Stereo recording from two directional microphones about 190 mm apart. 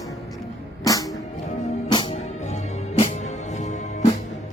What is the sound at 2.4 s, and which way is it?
Music, 35° left (ahead or behind).